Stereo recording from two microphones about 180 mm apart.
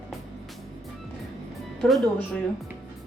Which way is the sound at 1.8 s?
Centre (ahead or behind).